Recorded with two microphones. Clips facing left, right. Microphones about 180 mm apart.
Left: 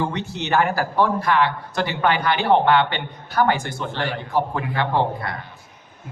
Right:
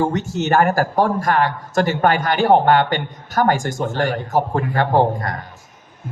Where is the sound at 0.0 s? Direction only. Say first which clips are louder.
Right 6 dB; 45° right (ahead or behind).